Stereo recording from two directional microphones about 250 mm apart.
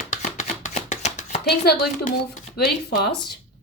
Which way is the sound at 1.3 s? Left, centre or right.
Left.